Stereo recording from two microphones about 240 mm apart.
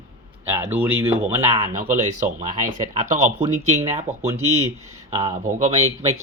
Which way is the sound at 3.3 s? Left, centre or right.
Right.